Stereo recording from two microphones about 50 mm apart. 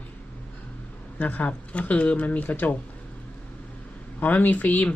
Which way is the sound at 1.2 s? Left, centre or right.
Left.